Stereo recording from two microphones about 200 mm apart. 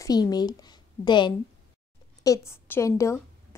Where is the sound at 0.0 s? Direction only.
20° left (ahead or behind).